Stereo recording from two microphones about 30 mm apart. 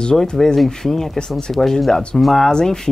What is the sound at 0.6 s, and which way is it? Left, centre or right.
Speech, centre.